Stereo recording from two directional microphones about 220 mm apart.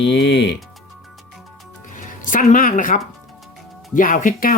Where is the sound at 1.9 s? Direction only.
35° left (ahead or behind).